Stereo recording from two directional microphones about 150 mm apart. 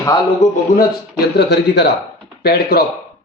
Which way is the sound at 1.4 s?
90° left.